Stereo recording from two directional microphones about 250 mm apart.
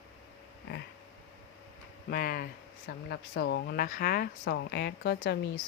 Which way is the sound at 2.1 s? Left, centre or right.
Left.